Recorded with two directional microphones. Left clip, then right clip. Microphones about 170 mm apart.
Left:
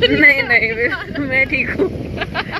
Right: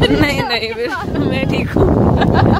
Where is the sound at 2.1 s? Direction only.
90° right.